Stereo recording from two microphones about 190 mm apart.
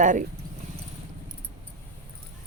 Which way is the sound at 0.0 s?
40° right (ahead or behind).